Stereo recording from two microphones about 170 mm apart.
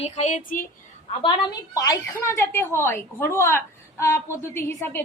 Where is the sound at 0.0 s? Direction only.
40° left (ahead or behind).